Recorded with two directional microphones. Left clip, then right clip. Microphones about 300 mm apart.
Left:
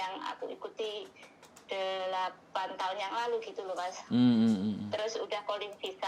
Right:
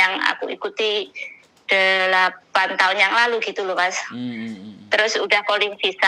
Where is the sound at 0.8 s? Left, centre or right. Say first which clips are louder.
Right 18 dB; right.